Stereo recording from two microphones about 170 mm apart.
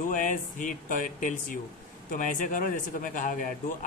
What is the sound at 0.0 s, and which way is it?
A man's voice, 50° left (ahead or behind).